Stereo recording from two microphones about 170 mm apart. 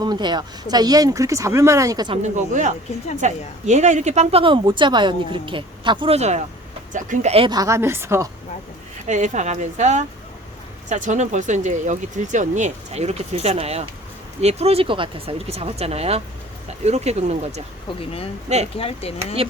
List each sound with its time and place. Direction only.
0.0 s speech: 25° right (ahead or behind)
2.2 s a woman's voice: 45° right (ahead or behind); by 8.3 s 15° right (ahead or behind)
9.0 s a woman's voice: 45° right (ahead or behind)
18.8 s speech: 35° left (ahead or behind)